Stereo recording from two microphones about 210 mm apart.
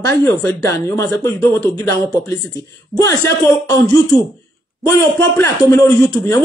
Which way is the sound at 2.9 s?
15° left (ahead or behind).